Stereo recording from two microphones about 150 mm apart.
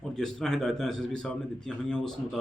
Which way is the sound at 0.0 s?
5° left (ahead or behind).